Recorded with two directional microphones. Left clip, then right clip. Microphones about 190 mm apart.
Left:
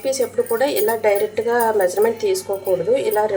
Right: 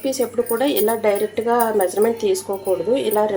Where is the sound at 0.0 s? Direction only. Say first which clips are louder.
Left 1 dB; 20° right (ahead or behind).